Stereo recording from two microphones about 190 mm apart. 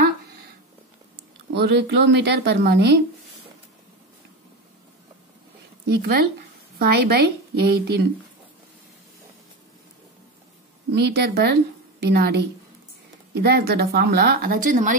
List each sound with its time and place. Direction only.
1.5 s a woman's voice: 60° right (ahead or behind)
5.9 s a woman's voice: 55° right (ahead or behind)
11.0 s a woman's voice: 60° right (ahead or behind)